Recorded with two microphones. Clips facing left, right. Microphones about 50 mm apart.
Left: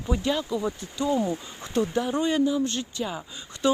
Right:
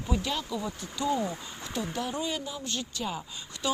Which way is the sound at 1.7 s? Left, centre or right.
Left.